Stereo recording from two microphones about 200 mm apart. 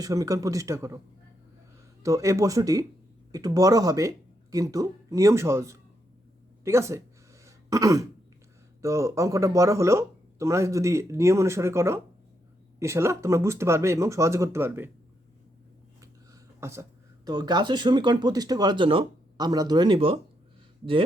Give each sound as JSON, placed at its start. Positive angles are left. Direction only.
{"t": 0.0, "sound": "speech", "side_deg": -15}
{"t": 2.0, "sound": "speech", "side_deg": -15}
{"t": 7.4, "sound": "throat clearing", "side_deg": -15}
{"t": 8.8, "sound": "speech", "side_deg": -15}
{"t": 16.0, "sound": "a sound", "side_deg": -15}
{"t": 17.2, "sound": "speech", "side_deg": -20}